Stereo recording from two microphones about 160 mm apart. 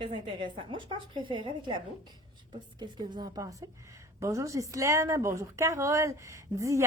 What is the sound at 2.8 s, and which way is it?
A woman's voice, 30° right (ahead or behind).